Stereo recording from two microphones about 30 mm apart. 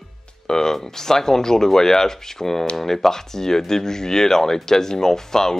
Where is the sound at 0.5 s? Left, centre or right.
Centre.